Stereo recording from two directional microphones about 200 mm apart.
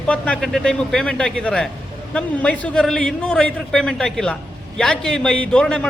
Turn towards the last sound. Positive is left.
turn(degrees=5)  # may be behind; listen again after turning